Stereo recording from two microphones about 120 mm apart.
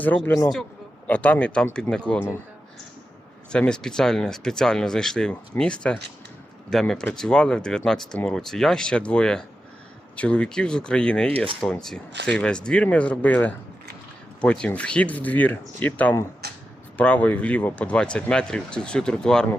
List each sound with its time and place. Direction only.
0.0 s speech: 15° left (ahead or behind)
3.5 s speech: 5° left (ahead or behind)
11.3 s speech: 55° right (ahead or behind)
11.6 s speech: 5° left (ahead or behind)